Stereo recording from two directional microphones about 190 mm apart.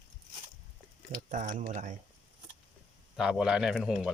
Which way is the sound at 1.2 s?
45° right (ahead or behind).